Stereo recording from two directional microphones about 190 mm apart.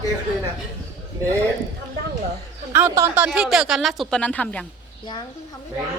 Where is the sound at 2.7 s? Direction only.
15° right (ahead or behind).